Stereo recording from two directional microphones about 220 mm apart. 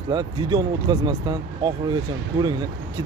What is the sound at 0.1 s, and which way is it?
Speech, 20° right (ahead or behind).